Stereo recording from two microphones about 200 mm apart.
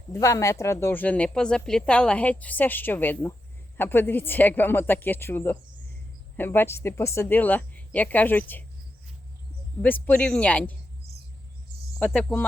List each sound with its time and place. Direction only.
0.1 s speech: 15° left (ahead or behind)
9.8 s speech: 10° left (ahead or behind)
11.9 s speech: 5° left (ahead or behind)